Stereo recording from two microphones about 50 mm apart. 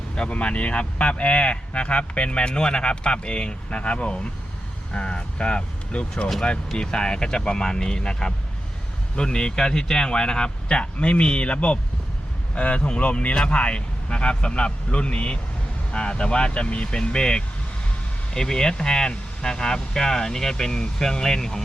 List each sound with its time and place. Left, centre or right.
0.2 s speech: left